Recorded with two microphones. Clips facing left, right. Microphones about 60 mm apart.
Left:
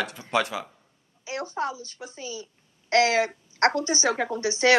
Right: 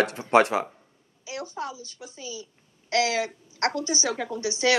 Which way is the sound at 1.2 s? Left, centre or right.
Left.